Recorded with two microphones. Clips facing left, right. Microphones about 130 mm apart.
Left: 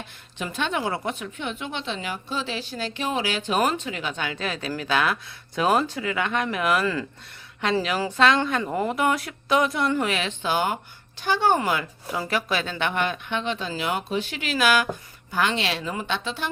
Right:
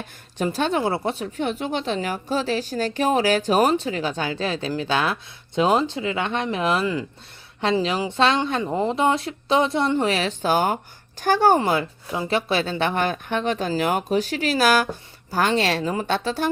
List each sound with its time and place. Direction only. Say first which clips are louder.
0.3 s speech: right 5 dB; 35° right (ahead or behind)